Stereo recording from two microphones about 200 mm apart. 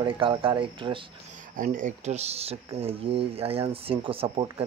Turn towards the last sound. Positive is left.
turn(degrees=-25)  # may be behind; listen again after turning